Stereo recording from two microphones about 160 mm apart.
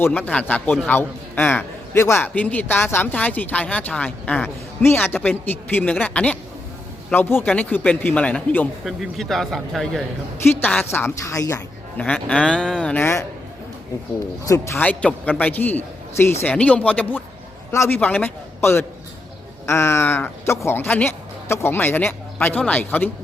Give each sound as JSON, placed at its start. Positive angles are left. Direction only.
{"t": 0.0, "sound": "a man's voice", "side_deg": 10}
{"t": 11.9, "sound": "a man's voice", "side_deg": 5}
{"t": 14.4, "sound": "a man's voice", "side_deg": 20}